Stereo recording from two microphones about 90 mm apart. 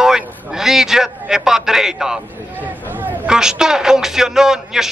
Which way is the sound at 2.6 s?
20° right (ahead or behind).